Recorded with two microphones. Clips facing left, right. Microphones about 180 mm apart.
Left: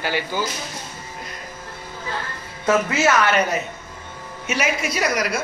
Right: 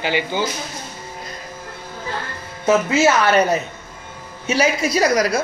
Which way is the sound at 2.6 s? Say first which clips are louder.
Right 3 dB; 25° right (ahead or behind).